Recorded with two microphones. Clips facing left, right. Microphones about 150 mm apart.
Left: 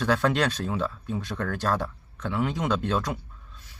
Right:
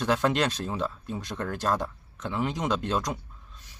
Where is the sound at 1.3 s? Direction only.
10° right (ahead or behind).